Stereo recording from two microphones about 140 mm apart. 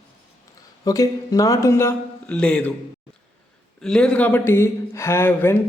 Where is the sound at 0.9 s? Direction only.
25° left (ahead or behind).